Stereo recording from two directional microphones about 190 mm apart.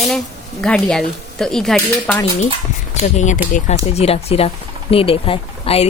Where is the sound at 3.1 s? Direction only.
40° left (ahead or behind).